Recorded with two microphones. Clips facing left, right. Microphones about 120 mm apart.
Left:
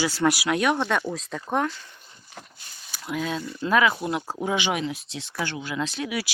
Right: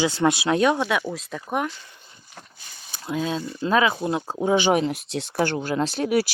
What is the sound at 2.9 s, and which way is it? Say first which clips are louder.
Speech: right 2 dB; 25° right (ahead or behind).